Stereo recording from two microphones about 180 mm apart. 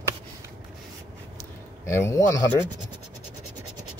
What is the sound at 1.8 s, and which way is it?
Speech, 15° left (ahead or behind).